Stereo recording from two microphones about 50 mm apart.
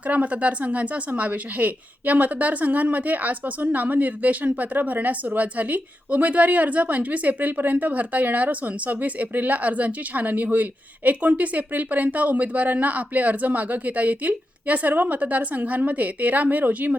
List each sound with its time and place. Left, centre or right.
0.0 s speech: right